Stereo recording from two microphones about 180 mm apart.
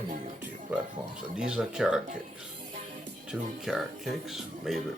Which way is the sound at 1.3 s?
5° right (ahead or behind).